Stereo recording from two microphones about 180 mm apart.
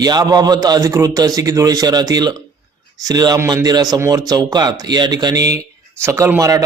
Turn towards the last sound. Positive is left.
turn(degrees=-15)  # may be behind; listen again after turning